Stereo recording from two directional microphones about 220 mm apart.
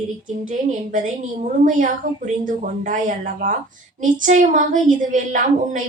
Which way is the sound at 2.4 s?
35° right (ahead or behind).